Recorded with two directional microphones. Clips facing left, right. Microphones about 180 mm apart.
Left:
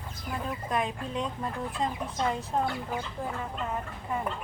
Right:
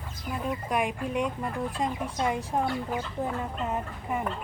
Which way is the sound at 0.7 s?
10° right (ahead or behind).